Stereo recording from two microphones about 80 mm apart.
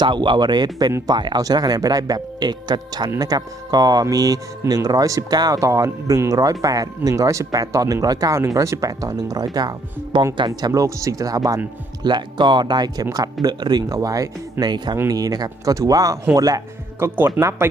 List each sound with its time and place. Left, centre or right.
0.0 s speech: right
1.0 s speech: right
1.4 s speech: right
10.7 s speech: right
12.0 s speech: right
13.9 s speech: right
14.6 s speech: right
17.0 s speech: right